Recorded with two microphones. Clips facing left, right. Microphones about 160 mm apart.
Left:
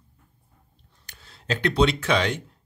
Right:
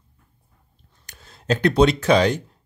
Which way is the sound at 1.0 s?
45° right (ahead or behind).